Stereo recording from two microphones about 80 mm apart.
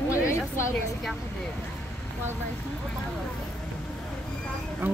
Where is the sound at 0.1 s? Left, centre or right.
Left.